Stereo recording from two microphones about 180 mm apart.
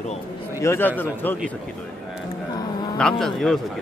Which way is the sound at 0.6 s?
15° left (ahead or behind).